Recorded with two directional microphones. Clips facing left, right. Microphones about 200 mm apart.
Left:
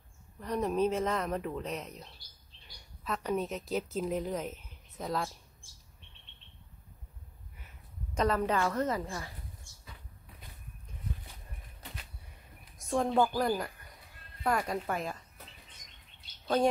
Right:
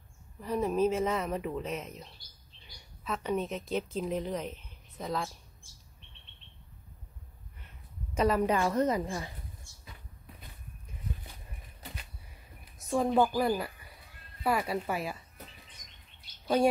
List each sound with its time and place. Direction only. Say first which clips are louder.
0.4 s a woman's voice: right 2 dB; centre (ahead or behind)
8.1 s a woman's voice: right 2 dB; 10° right (ahead or behind)
12.7 s a woman's voice: right 2 dB; 5° right (ahead or behind)